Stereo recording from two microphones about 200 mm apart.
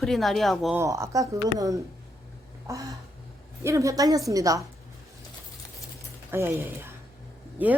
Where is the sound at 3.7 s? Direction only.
15° right (ahead or behind).